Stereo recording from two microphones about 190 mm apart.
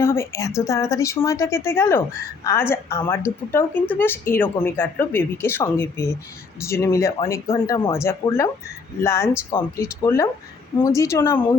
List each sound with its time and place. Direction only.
0.0 s a woman's voice: 15° left (ahead or behind)